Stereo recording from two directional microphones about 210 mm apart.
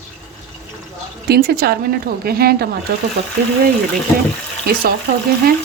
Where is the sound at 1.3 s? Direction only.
45° right (ahead or behind).